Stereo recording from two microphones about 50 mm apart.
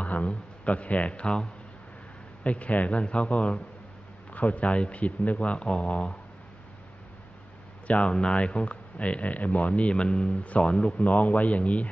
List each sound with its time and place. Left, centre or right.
0.0 s a man's voice: left
7.8 s speech: left